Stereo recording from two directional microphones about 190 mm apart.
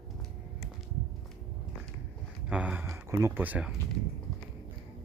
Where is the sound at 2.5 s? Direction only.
5° right (ahead or behind).